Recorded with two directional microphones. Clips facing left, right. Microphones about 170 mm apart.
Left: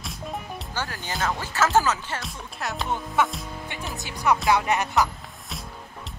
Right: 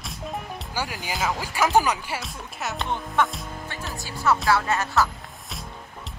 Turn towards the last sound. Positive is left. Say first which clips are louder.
# left 1 dB
turn(degrees=15)  # may be behind; listen again after turning